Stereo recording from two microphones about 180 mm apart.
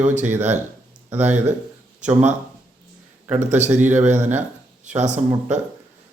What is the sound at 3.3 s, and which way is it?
Speech, 40° right (ahead or behind).